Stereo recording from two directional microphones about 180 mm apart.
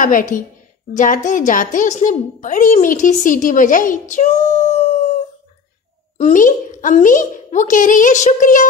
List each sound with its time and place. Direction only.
0.0 s a woman's voice: 50° left (ahead or behind)
4.1 s child singing: 40° left (ahead or behind)
6.1 s a woman's voice: 45° left (ahead or behind)